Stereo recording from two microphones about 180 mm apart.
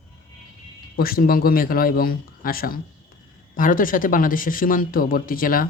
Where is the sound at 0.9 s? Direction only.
55° left (ahead or behind).